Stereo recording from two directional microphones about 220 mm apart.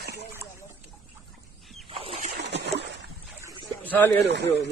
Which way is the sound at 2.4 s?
50° right (ahead or behind).